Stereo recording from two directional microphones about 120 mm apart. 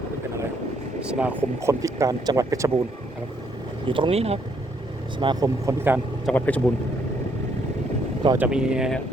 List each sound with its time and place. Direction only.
1.0 s speech: 10° right (ahead or behind)
1.6 s speech: 25° right (ahead or behind)
3.8 s speech: 45° right (ahead or behind)
5.2 s speech: 40° right (ahead or behind)
5.6 s speech: 15° right (ahead or behind)
6.3 s speech: 15° left (ahead or behind)
8.4 s speech: 5° right (ahead or behind)